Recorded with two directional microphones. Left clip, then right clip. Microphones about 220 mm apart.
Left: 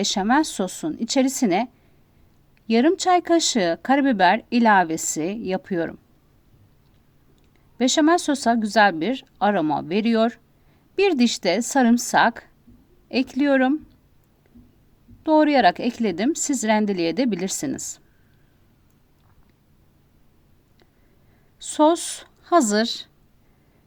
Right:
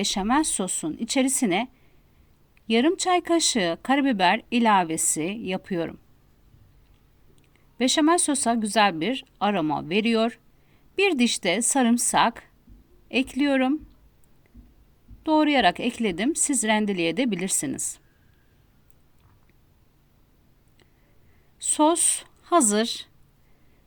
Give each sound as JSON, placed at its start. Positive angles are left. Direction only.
{"t": 0.0, "sound": "a woman's voice", "side_deg": -20}
{"t": 7.8, "sound": "speech", "side_deg": -20}
{"t": 15.2, "sound": "speech", "side_deg": -20}
{"t": 21.6, "sound": "speech", "side_deg": -20}